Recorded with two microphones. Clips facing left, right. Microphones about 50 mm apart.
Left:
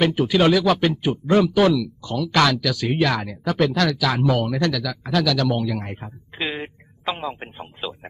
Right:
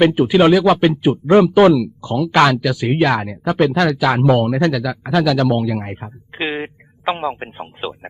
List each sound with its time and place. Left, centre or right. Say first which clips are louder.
0.0 s speech: right 5 dB; right